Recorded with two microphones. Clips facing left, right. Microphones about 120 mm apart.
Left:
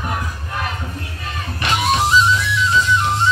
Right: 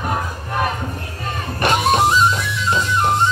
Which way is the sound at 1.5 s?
45° right (ahead or behind).